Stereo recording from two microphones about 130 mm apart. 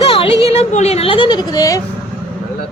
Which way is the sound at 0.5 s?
60° left (ahead or behind).